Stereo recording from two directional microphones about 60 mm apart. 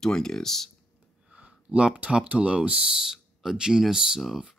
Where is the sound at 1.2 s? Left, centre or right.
Centre.